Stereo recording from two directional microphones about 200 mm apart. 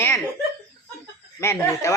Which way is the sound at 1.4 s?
15° left (ahead or behind).